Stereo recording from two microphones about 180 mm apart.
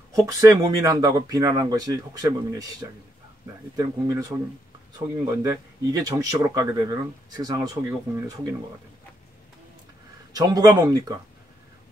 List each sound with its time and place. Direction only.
0.1 s speech: 20° right (ahead or behind)
10.3 s speech: 20° right (ahead or behind)